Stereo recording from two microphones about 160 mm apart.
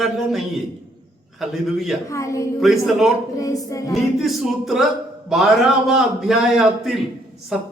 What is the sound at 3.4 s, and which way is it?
Music, 20° left (ahead or behind).